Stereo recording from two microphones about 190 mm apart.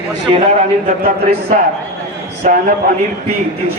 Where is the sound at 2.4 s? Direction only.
40° right (ahead or behind).